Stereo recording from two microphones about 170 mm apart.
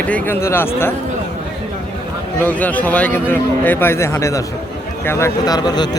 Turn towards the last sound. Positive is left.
turn(degrees=25)  # may be behind; listen again after turning